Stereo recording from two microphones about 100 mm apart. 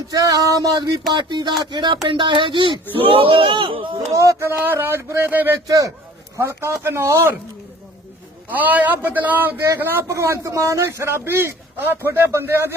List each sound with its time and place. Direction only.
0.1 s a sound: 35° right (ahead or behind)
2.0 s speech: 55° right (ahead or behind)
3.0 s speech: 65° right (ahead or behind)
4.1 s a man's voice: 35° right (ahead or behind)
5.6 s a sound: 35° right (ahead or behind)
6.3 s a man's voice: 25° right (ahead or behind)
8.4 s a man's voice: 15° right (ahead or behind)